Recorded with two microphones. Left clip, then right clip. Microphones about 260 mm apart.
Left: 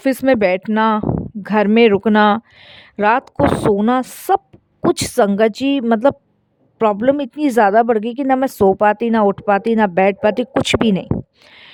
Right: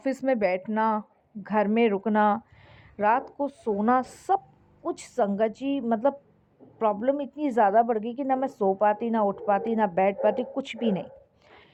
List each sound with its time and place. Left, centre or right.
0.0 s a woman's voice: left